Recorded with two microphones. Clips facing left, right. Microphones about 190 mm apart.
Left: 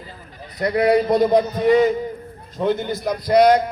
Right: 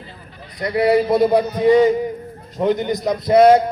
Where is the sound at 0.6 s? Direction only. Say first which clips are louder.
Right 1 dB; 5° right (ahead or behind); by 3.6 s 25° right (ahead or behind).